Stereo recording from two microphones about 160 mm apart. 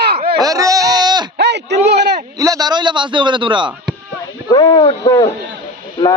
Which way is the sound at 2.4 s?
25° right (ahead or behind).